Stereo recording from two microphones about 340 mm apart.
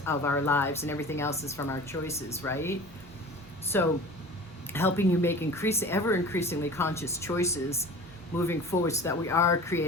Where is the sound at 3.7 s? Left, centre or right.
Centre.